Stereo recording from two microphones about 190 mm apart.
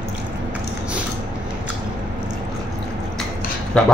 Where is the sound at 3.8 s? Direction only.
5° left (ahead or behind).